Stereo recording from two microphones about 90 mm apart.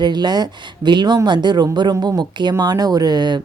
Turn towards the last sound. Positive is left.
turn(degrees=-55)  # may be behind; listen again after turning